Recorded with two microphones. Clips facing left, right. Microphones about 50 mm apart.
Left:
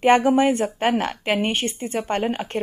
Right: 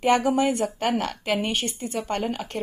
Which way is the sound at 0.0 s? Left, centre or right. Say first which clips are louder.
Left 4 dB; left.